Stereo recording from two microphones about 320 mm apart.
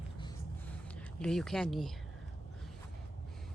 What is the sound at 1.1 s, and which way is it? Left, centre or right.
Speech, centre.